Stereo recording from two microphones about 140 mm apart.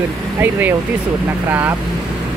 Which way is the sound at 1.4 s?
15° right (ahead or behind).